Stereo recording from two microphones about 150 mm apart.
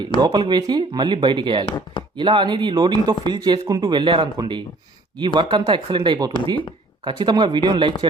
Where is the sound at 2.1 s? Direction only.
35° right (ahead or behind).